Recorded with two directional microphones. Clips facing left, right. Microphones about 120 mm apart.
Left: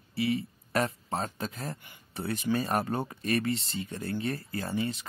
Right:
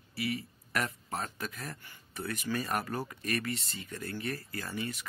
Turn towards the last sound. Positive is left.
turn(degrees=25)  # may be behind; listen again after turning